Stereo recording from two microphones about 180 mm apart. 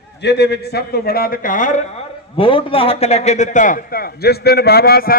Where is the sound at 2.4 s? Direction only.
30° left (ahead or behind).